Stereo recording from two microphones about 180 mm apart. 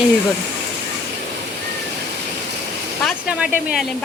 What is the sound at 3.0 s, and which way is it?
Speech, centre (ahead or behind).